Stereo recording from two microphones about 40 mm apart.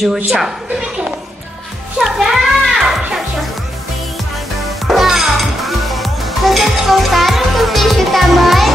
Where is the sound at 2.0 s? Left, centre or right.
Centre.